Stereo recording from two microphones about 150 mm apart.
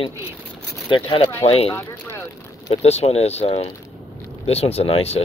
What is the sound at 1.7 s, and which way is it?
Speech, 15° left (ahead or behind).